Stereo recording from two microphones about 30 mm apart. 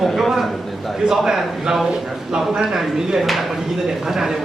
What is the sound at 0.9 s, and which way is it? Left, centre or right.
A man's voice, centre.